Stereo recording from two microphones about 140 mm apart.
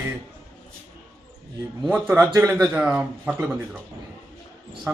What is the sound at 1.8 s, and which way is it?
Speech, 5° right (ahead or behind).